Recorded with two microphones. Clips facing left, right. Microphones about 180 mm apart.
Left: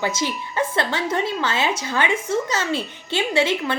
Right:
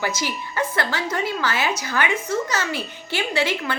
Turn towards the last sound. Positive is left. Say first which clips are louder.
# left 3 dB
turn(degrees=25)  # may be behind; listen again after turning